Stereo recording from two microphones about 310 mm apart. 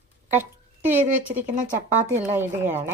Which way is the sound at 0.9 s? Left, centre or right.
Centre.